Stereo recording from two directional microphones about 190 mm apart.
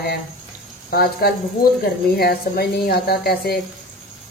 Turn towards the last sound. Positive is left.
turn(degrees=55)  # may be behind; listen again after turning